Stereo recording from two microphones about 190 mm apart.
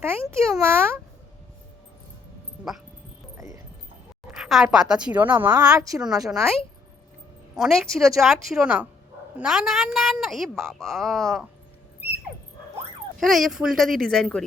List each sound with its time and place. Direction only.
0.3 s a child's voice: 15° right (ahead or behind)
3.3 s a sound: 15° right (ahead or behind)
4.3 s a woman's voice: centre (ahead or behind)
5.5 s speech: 20° right (ahead or behind)
6.2 s a woman's voice: centre (ahead or behind)
13.1 s a woman's voice: centre (ahead or behind)